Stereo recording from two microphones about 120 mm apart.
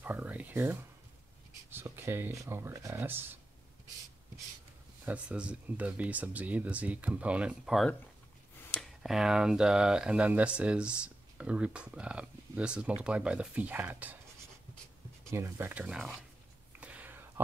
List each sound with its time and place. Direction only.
0.0 s a sound: 10° right (ahead or behind)
1.7 s speech: 20° right (ahead or behind)
5.0 s speech: 10° right (ahead or behind)
9.0 s speech: 5° right (ahead or behind)
15.2 s speech: 20° right (ahead or behind); by 16.2 s 5° right (ahead or behind)
16.8 s a sound: 15° right (ahead or behind)